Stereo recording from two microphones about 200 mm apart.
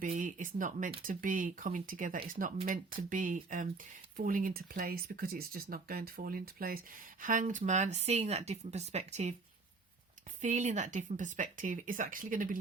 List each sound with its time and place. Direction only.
0.0 s speech: 40° right (ahead or behind)
10.4 s speech: 35° right (ahead or behind)